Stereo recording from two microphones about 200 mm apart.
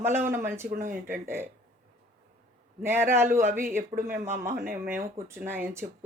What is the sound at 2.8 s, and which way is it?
Speech, 10° right (ahead or behind).